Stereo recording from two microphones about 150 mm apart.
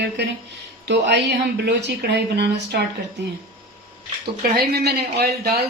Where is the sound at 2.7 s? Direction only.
90° right.